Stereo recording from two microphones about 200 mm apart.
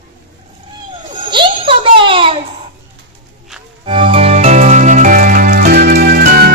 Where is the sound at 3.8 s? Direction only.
25° right (ahead or behind).